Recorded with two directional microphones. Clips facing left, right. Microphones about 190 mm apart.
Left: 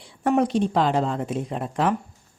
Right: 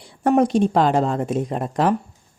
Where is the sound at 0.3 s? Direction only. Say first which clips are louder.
Right 4 dB; 45° right (ahead or behind).